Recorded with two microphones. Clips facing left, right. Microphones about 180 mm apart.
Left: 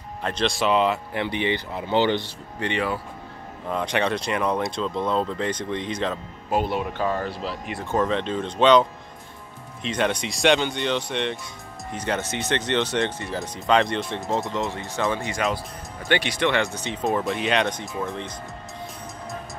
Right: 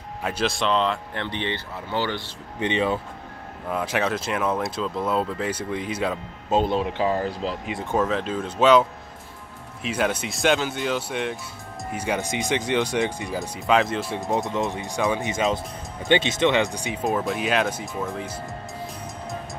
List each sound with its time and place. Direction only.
0.2 s speech: 5° right (ahead or behind); by 2.2 s 20° left (ahead or behind)
2.6 s speech: 20° right (ahead or behind)
3.6 s speech: 5° right (ahead or behind)
6.5 s speech: 25° right (ahead or behind)
7.9 s speech: 5° right (ahead or behind)
9.8 s speech: 5° right (ahead or behind)
14.5 s speech: 15° right (ahead or behind)
17.0 s speech: centre (ahead or behind)